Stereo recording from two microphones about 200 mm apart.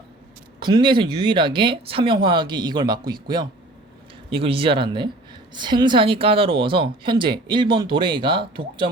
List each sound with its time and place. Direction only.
0.6 s a woman's voice: 25° right (ahead or behind)